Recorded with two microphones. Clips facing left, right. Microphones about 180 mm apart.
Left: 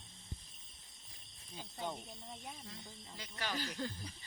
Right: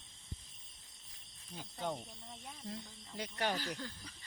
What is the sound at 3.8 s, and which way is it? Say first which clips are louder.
Speech: left 5 dB; 30° left (ahead or behind).